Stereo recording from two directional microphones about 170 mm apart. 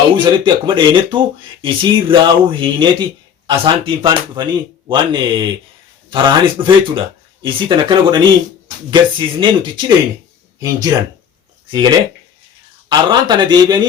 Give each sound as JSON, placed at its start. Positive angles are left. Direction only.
{"t": 0.3, "sound": "speech", "side_deg": -30}